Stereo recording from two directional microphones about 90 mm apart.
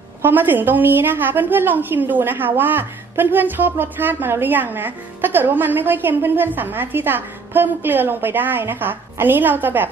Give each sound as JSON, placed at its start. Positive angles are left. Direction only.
{"t": 0.2, "sound": "a woman's voice", "side_deg": -20}